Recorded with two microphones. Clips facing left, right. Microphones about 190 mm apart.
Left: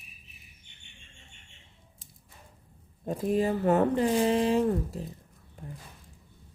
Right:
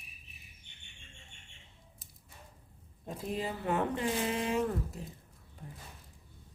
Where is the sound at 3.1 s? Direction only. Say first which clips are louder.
Left 10 dB; 45° left (ahead or behind).